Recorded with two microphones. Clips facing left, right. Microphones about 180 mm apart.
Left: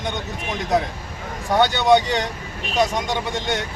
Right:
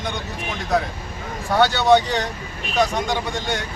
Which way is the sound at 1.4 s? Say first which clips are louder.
Even; 20° left (ahead or behind).